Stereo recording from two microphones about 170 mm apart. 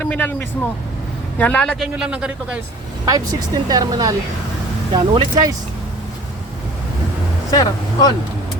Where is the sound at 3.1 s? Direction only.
20° right (ahead or behind).